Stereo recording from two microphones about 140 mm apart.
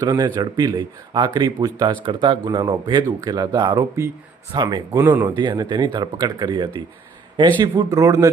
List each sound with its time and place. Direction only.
0.0 s speech: 25° right (ahead or behind)
4.9 s speech: 20° right (ahead or behind)
5.4 s speech: 30° right (ahead or behind)